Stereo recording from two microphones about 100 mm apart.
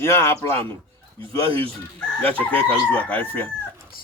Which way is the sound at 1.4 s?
65° right (ahead or behind).